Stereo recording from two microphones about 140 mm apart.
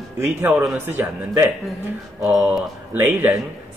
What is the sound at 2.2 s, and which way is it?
Speech, 5° right (ahead or behind).